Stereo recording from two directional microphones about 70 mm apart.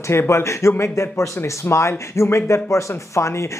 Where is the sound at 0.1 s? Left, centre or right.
Left.